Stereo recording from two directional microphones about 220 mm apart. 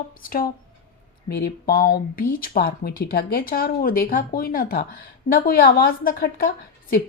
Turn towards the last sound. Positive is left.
turn(degrees=40)  # may be behind; listen again after turning